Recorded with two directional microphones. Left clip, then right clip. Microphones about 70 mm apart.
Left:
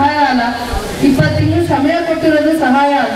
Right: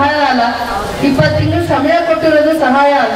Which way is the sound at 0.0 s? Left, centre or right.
Right.